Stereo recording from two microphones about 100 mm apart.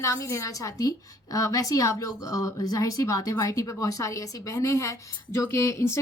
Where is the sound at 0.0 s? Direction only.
30° left (ahead or behind).